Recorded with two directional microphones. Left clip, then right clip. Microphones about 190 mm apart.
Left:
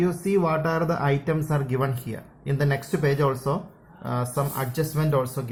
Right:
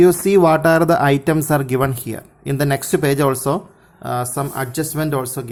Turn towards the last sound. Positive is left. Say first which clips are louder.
# right 4 dB
turn(degrees=-45)  # may be behind; listen again after turning